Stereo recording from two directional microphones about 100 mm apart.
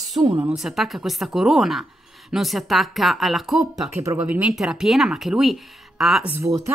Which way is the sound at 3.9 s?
30° right (ahead or behind).